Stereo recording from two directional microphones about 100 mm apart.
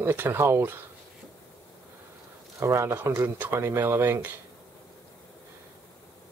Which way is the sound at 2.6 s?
30° right (ahead or behind).